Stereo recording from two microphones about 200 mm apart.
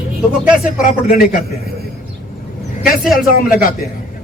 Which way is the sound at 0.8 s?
45° left (ahead or behind).